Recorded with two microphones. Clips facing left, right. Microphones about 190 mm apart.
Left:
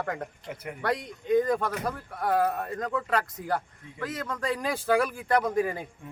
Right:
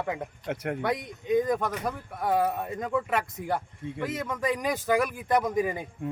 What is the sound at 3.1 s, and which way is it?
Speech, 25° right (ahead or behind).